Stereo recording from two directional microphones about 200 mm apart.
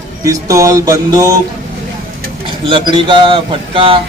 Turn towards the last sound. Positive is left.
turn(degrees=-25)  # may be behind; listen again after turning